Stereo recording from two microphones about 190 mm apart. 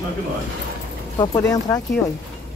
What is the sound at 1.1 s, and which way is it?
Speech, 20° left (ahead or behind).